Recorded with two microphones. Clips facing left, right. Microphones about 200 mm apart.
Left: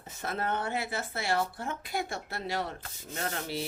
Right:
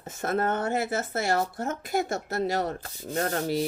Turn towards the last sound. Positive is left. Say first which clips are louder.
# right 8 dB
turn(degrees=-45)  # may be behind; listen again after turning